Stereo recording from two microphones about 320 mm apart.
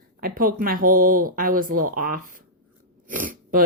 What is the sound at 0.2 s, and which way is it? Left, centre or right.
Speech, right.